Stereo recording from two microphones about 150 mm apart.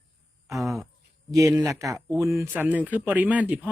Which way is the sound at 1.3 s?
20° right (ahead or behind).